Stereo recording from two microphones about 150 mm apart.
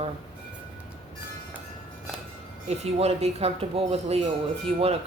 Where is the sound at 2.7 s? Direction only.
45° right (ahead or behind).